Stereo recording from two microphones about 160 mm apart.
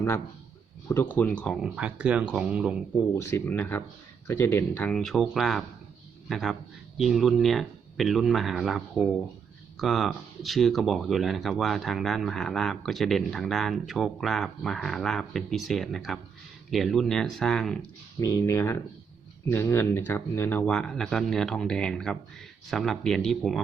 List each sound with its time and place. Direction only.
0.9 s speech: 15° left (ahead or behind); by 2.7 s 5° right (ahead or behind)
3.2 s speech: 15° left (ahead or behind)
18.2 s speech: 20° left (ahead or behind); by 23.6 s centre (ahead or behind)